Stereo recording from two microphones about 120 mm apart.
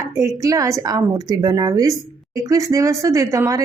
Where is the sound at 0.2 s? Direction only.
25° right (ahead or behind).